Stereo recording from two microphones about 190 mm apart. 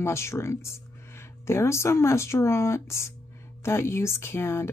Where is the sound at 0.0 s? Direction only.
15° left (ahead or behind).